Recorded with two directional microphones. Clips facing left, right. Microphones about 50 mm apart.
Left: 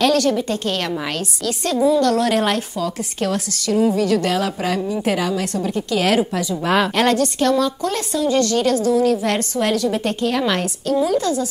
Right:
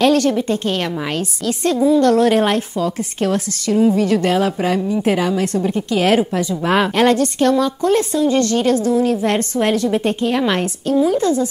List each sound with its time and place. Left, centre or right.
0.0 s a woman's voice: right